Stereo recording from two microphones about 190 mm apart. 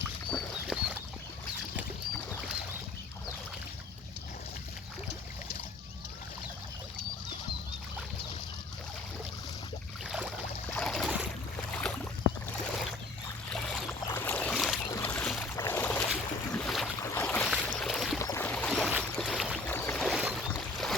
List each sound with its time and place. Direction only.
0.3 s boat: centre (ahead or behind)
10.1 s a sound: 5° right (ahead or behind)
10.7 s boat: 5° left (ahead or behind)
13.5 s boat: centre (ahead or behind)
14.8 s boat: 15° left (ahead or behind)
15.1 s boat: 5° left (ahead or behind)
15.5 s a sound: 15° left (ahead or behind)
16.5 s boat: 5° left (ahead or behind)
17.0 s boat: 15° left (ahead or behind)
17.5 s a sound: centre (ahead or behind)
18.2 s boat: 15° left (ahead or behind)
19.0 s a sound: centre (ahead or behind)
19.7 s boat: 5° left (ahead or behind)